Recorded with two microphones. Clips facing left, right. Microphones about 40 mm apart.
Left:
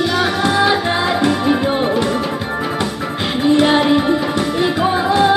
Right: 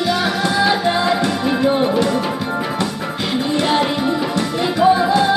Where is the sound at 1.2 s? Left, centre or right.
Centre.